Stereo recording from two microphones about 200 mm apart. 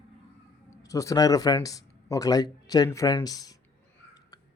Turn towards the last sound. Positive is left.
turn(degrees=20)  # may be behind; listen again after turning